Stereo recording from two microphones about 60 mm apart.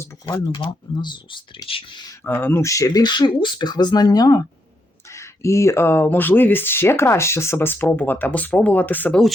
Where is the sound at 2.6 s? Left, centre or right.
Left.